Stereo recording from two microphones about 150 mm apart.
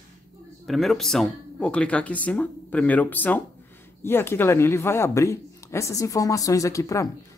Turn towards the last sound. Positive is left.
turn(degrees=20)  # may be behind; listen again after turning